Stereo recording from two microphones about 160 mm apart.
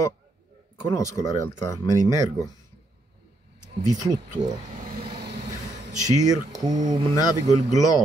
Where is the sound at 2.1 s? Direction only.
20° right (ahead or behind).